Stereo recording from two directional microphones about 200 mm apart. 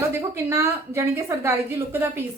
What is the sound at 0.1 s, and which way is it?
A woman's voice, 15° right (ahead or behind).